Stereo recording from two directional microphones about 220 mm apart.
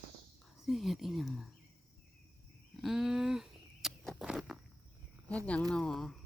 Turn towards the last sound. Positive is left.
turn(degrees=0)  # may be behind; listen again after turning